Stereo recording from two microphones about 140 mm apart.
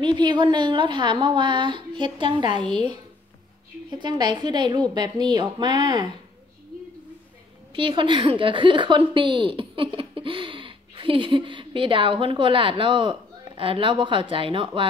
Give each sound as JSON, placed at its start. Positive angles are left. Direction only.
{"t": 0.0, "sound": "a woman's voice", "side_deg": -30}
{"t": 4.0, "sound": "a woman's voice", "side_deg": -30}
{"t": 7.7, "sound": "a woman's voice", "side_deg": -35}